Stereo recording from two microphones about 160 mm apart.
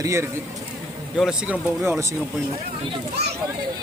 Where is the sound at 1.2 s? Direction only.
5° right (ahead or behind).